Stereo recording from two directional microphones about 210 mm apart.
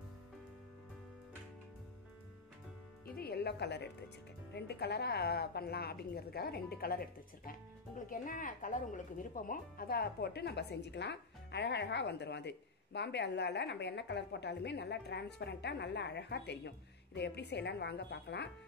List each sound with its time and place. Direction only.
3.2 s music: 50° left (ahead or behind)
4.6 s speech: 50° left (ahead or behind)